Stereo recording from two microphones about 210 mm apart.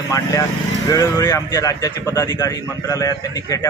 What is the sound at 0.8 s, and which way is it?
Speech, 15° left (ahead or behind).